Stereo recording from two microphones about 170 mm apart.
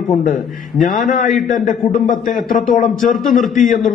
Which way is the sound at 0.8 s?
55° left (ahead or behind).